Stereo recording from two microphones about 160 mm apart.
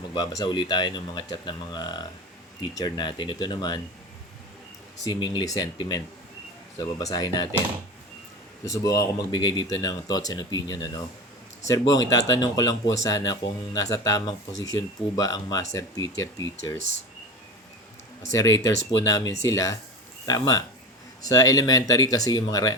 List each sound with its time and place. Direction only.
0.1 s speech: 25° left (ahead or behind)
5.0 s speech: 30° left (ahead or behind)
8.6 s speech: 20° left (ahead or behind)
18.3 s speech: 20° left (ahead or behind)